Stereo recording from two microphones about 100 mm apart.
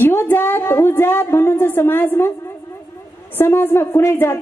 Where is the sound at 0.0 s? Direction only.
20° left (ahead or behind).